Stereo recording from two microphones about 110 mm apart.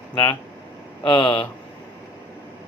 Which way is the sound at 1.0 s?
40° left (ahead or behind).